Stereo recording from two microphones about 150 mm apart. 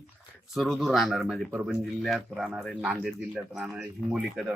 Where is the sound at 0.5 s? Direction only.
Centre (ahead or behind).